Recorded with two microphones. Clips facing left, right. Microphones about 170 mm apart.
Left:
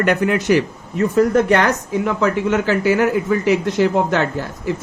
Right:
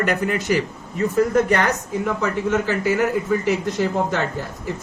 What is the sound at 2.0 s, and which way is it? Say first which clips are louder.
A man's voice: left 4 dB; 90° left.